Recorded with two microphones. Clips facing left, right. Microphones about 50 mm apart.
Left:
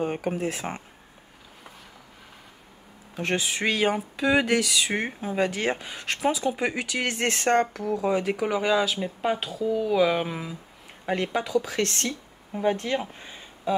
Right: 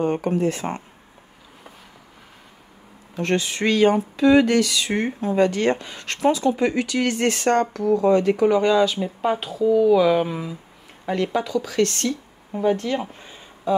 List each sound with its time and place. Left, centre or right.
0.0 s speech: centre
3.2 s speech: centre
7.7 s speech: centre
11.6 s speech: left